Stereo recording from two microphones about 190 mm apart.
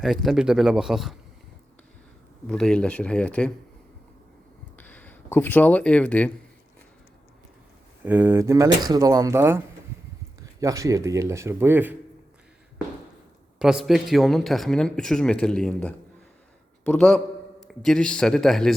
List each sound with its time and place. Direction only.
0.0 s a man's voice: centre (ahead or behind)
2.5 s speech: 5° left (ahead or behind)
4.8 s speech: 10° left (ahead or behind)
8.0 s speech: 10° right (ahead or behind)
13.6 s a man's voice: 5° right (ahead or behind)